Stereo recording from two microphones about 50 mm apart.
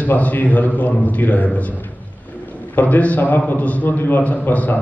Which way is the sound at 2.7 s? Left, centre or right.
Left.